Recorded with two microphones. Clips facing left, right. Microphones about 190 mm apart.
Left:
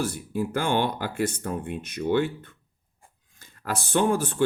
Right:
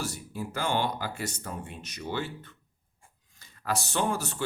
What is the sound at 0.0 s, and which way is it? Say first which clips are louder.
Speech: left 7 dB; 55° left (ahead or behind).